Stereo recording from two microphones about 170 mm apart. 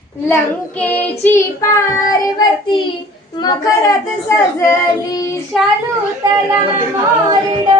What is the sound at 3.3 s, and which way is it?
Speech, 20° left (ahead or behind).